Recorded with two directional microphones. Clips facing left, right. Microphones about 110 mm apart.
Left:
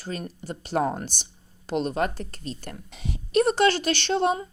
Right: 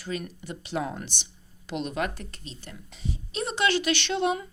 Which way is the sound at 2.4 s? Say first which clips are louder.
Left 7 dB; 50° left (ahead or behind).